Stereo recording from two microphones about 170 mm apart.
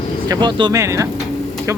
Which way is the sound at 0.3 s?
25° right (ahead or behind).